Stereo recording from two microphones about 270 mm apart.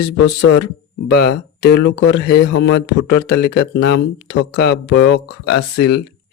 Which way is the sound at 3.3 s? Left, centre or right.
Left.